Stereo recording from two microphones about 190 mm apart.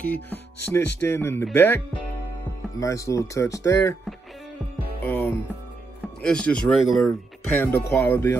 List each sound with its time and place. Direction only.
0.0 s speech: 10° left (ahead or behind)
2.8 s speech: 15° left (ahead or behind)
5.0 s speech: 10° left (ahead or behind)
7.6 s speech: 10° left (ahead or behind)